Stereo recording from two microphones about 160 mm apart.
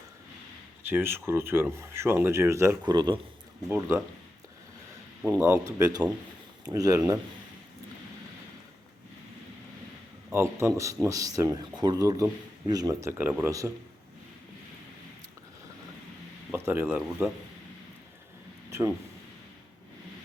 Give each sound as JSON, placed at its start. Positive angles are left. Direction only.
{"t": 0.8, "sound": "speech", "side_deg": -15}
{"t": 3.7, "sound": "speech", "side_deg": -15}
{"t": 5.2, "sound": "speech", "side_deg": -15}
{"t": 10.3, "sound": "speech", "side_deg": -15}
{"t": 16.5, "sound": "speech", "side_deg": -10}